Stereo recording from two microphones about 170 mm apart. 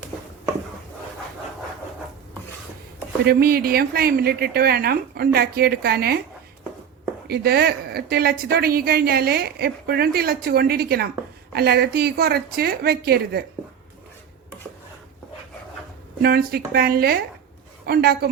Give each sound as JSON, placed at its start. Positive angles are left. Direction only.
{"t": 3.2, "sound": "a woman's voice", "side_deg": -60}
{"t": 7.3, "sound": "a woman's voice", "side_deg": -70}
{"t": 16.2, "sound": "a woman's voice", "side_deg": -65}